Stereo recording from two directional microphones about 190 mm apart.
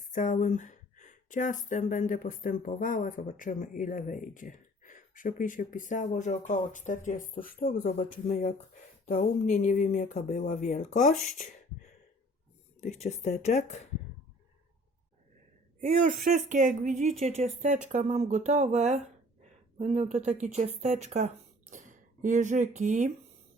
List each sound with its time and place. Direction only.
0.1 s speech: 45° left (ahead or behind)
12.8 s speech: 35° left (ahead or behind)
15.8 s speech: 40° right (ahead or behind)